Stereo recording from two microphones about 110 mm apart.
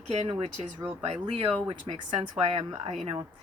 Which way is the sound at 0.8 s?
20° right (ahead or behind).